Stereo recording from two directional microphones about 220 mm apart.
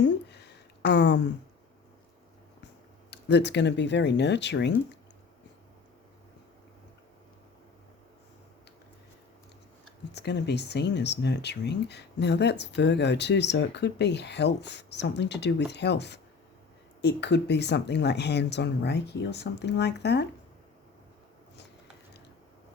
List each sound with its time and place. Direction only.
0.0 s a sound: 50° left (ahead or behind)
3.1 s speech: 50° left (ahead or behind)
10.1 s speech: 50° left (ahead or behind)